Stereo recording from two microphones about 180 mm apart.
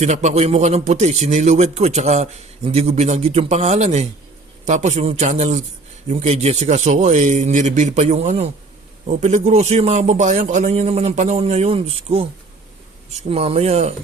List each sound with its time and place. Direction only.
0.0 s a man's voice: 40° right (ahead or behind)